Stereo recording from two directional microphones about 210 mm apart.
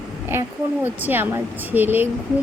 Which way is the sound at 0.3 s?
10° right (ahead or behind).